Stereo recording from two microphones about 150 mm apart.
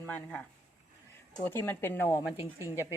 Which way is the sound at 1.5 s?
15° left (ahead or behind).